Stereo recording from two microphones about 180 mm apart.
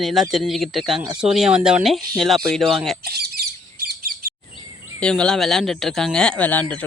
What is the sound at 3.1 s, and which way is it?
Bird, 60° right (ahead or behind).